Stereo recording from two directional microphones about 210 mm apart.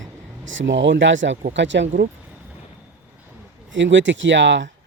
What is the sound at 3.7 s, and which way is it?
Speech, 60° right (ahead or behind).